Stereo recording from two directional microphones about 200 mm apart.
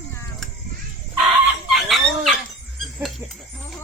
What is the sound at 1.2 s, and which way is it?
Chicken, centre (ahead or behind).